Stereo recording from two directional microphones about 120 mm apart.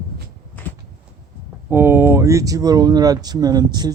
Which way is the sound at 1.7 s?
20° right (ahead or behind).